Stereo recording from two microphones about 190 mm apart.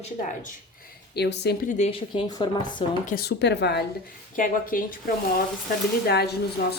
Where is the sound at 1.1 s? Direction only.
60° left (ahead or behind).